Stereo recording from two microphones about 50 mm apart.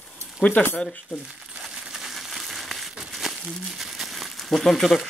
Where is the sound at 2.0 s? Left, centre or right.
Centre.